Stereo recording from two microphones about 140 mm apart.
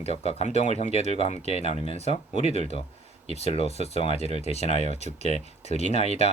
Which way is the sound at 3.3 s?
50° left (ahead or behind).